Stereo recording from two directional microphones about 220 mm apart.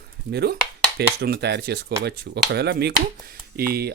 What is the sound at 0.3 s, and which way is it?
Speech, 50° right (ahead or behind).